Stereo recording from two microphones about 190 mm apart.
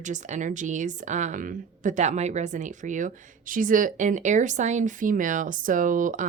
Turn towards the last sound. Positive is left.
turn(degrees=-45)  # may be behind; listen again after turning